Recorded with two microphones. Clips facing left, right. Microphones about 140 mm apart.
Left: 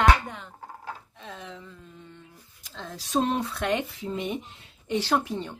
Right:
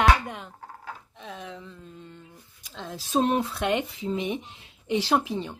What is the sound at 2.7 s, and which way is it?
Speech, centre (ahead or behind).